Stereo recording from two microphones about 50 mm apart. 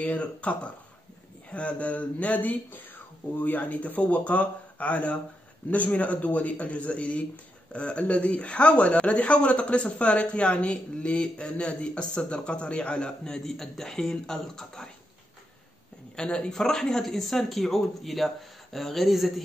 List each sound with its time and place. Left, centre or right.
0.0 s speech: left; by 14.9 s centre
16.2 s speech: centre